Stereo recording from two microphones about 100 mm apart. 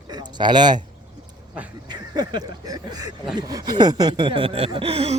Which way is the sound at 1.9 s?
45° right (ahead or behind).